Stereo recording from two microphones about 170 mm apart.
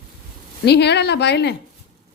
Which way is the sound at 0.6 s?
80° left.